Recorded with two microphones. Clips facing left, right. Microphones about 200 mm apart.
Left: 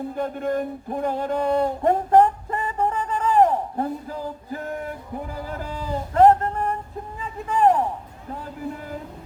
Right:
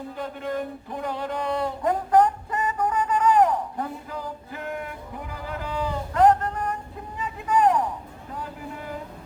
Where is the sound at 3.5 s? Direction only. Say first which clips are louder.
Left 3 dB; 35° left (ahead or behind).